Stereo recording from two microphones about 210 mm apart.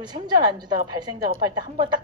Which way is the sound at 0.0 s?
20° right (ahead or behind).